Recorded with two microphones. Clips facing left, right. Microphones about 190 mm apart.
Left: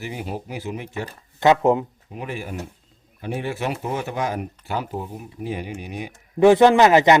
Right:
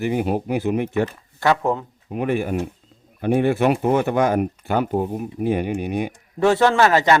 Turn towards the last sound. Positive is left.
turn(degrees=20)  # may be behind; listen again after turning